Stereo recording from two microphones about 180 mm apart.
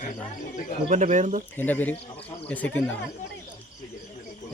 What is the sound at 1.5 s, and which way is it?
Bird, 10° left (ahead or behind).